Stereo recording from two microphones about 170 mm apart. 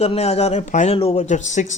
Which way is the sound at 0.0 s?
40° left (ahead or behind).